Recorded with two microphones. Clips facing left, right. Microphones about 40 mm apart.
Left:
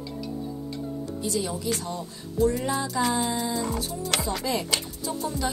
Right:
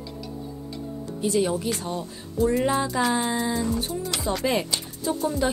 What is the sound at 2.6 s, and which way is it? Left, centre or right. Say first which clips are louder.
Music: right 4 dB; right.